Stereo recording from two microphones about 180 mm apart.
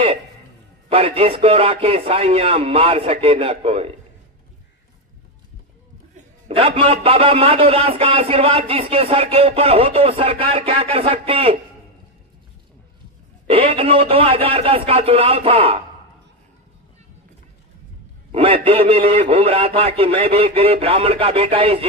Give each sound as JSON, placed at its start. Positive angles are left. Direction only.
{"t": 0.8, "sound": "a man's voice", "side_deg": -30}
{"t": 6.1, "sound": "a man's voice", "side_deg": -30}
{"t": 13.5, "sound": "a man's voice", "side_deg": -30}
{"t": 18.3, "sound": "a man's voice", "side_deg": -30}